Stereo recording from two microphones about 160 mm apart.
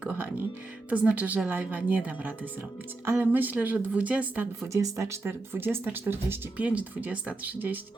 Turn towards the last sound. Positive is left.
turn(degrees=-10)  # may be behind; listen again after turning